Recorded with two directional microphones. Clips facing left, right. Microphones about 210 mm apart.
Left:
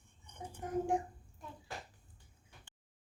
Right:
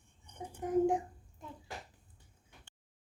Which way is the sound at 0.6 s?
15° right (ahead or behind).